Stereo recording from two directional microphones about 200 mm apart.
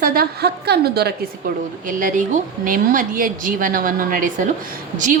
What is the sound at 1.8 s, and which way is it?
A woman's voice, 40° right (ahead or behind).